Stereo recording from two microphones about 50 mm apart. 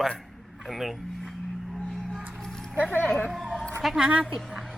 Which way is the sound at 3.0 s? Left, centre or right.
Left.